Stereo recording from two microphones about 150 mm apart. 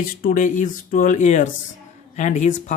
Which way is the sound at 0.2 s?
70° left (ahead or behind).